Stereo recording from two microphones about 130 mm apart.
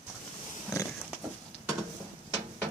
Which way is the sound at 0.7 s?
25° left (ahead or behind).